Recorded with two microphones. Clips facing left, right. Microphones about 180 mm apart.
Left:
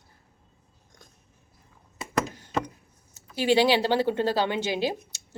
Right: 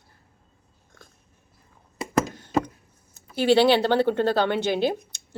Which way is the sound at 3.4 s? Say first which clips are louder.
Right 3 dB; 10° left (ahead or behind).